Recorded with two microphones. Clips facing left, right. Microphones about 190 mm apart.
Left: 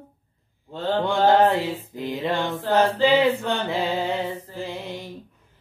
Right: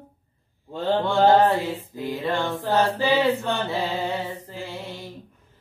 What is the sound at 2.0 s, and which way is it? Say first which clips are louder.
Music: even; 20° left (ahead or behind).